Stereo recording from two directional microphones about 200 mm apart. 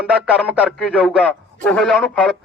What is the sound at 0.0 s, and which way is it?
Speech, 5° right (ahead or behind).